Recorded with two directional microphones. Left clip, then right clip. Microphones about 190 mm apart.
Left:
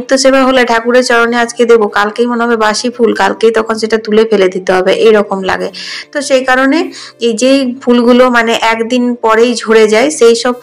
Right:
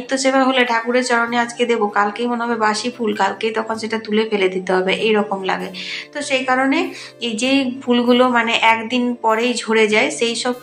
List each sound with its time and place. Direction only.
0.1 s speech: 35° left (ahead or behind)